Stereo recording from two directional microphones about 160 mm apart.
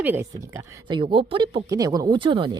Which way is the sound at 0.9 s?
30° right (ahead or behind).